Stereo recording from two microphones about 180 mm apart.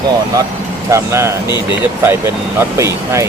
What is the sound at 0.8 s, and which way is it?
Speech, 15° right (ahead or behind).